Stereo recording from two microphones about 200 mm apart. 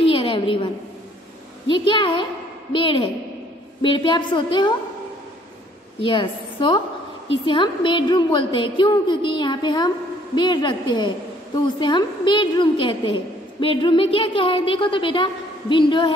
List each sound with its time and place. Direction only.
0.0 s a sound: 25° left (ahead or behind)
1.7 s a woman's voice: 25° left (ahead or behind)
6.0 s a woman's voice: 25° left (ahead or behind)